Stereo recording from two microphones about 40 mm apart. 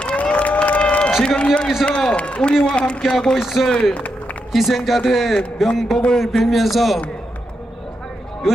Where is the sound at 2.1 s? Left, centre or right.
Left.